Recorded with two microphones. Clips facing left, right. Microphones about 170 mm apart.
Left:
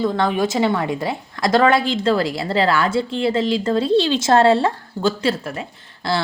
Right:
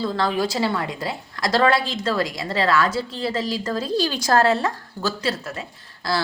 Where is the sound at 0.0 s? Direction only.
20° left (ahead or behind).